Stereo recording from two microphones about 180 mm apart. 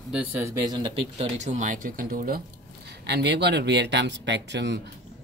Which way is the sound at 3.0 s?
70° right (ahead or behind).